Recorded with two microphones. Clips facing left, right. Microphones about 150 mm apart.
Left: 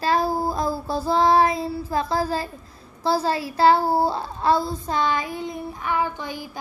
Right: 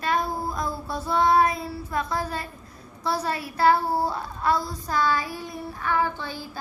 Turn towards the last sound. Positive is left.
turn(degrees=15)  # may be behind; listen again after turning